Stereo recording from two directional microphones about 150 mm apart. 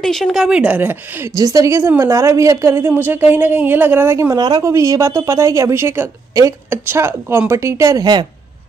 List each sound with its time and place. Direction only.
0.0 s a woman's voice: centre (ahead or behind); by 8.3 s 25° right (ahead or behind)